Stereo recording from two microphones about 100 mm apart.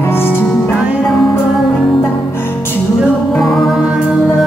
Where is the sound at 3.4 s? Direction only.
Centre (ahead or behind).